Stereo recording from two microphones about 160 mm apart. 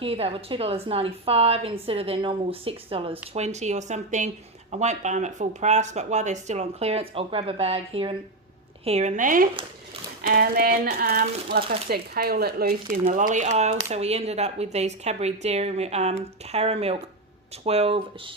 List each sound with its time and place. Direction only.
0.0 s a woman's voice: 35° right (ahead or behind); by 9.5 s 55° right (ahead or behind)
10.2 s a woman's voice: 70° right (ahead or behind); by 18.0 s 40° right (ahead or behind)